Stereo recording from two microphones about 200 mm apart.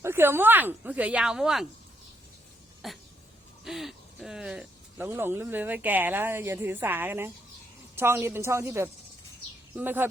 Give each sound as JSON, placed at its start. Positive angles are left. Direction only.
{"t": 0.0, "sound": "speech", "side_deg": -10}
{"t": 2.8, "sound": "a sound", "side_deg": 0}
{"t": 3.6, "sound": "speech", "side_deg": 0}